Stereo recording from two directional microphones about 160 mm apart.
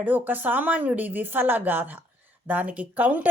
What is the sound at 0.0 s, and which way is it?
Speech, 10° right (ahead or behind).